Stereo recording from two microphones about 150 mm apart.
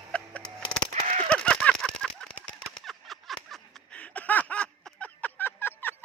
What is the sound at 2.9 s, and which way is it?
Snicker, centre (ahead or behind).